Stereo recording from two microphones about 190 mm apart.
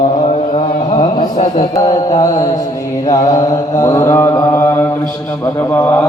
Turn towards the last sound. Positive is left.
turn(degrees=10)  # may be behind; listen again after turning